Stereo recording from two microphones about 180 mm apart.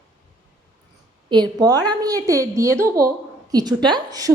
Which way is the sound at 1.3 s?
25° right (ahead or behind).